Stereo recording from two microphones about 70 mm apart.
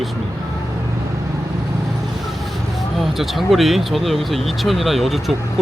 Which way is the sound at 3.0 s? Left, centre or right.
Centre.